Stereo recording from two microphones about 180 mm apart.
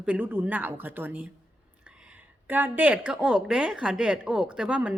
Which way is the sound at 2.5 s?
10° right (ahead or behind).